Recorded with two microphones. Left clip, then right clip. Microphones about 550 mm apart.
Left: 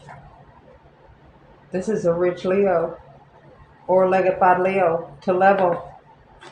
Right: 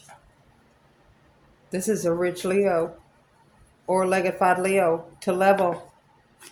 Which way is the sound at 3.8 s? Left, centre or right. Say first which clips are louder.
Left 5 dB; right.